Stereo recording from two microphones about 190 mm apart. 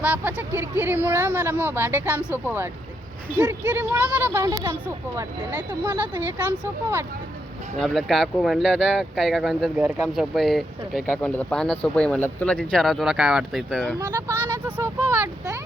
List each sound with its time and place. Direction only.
0.0 s speech: 10° right (ahead or behind)
7.8 s speech: centre (ahead or behind)
11.2 s speech: 10° left (ahead or behind)
14.0 s speech: 20° right (ahead or behind)